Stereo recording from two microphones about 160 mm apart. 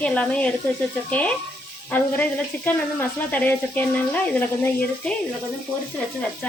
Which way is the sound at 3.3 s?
10° left (ahead or behind).